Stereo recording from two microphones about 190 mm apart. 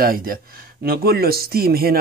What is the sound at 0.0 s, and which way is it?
A man's voice, 50° right (ahead or behind).